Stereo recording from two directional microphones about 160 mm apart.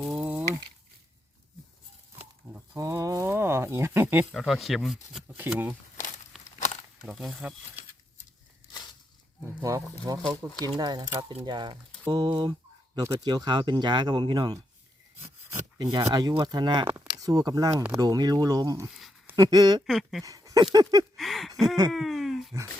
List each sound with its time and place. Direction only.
0.0 s a sound: 10° right (ahead or behind)
2.1 s a sound: 15° right (ahead or behind)
4.4 s speech: centre (ahead or behind)
5.5 s speech: 10° right (ahead or behind)
7.0 s speech: centre (ahead or behind)
8.7 s a sound: 25° left (ahead or behind)
9.6 s speech: 20° right (ahead or behind)
15.4 s rub: 15° right (ahead or behind)
15.9 s speech: 25° right (ahead or behind)
16.8 s speech: 10° right (ahead or behind)
17.2 s speech: 25° right (ahead or behind)
19.9 s speech: centre (ahead or behind)
20.2 s speech: 20° right (ahead or behind)
21.2 s a sound: centre (ahead or behind)